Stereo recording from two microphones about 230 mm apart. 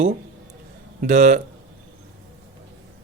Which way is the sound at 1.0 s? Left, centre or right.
Right.